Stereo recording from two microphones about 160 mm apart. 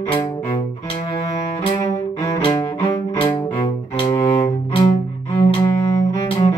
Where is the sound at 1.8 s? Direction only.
20° left (ahead or behind).